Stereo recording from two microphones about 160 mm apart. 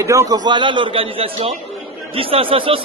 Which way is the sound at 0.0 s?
20° right (ahead or behind).